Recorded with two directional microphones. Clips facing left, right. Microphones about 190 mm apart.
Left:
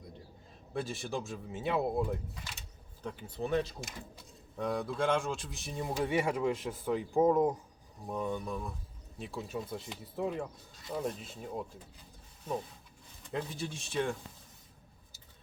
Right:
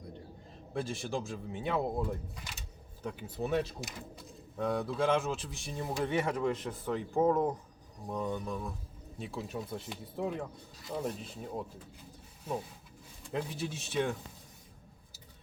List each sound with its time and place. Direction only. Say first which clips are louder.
0.7 s speech: right 1 dB; centre (ahead or behind)
2.6 s speech: right 3 dB; 5° right (ahead or behind)
13.2 s speech: right 1 dB; centre (ahead or behind)